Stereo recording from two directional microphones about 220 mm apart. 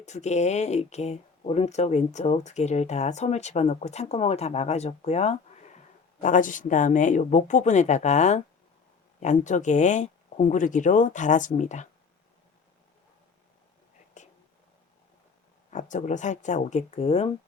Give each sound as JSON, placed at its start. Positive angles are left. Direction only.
{"t": 0.0, "sound": "speech", "side_deg": 30}
{"t": 14.2, "sound": "whispering", "side_deg": 35}
{"t": 15.7, "sound": "speech", "side_deg": 35}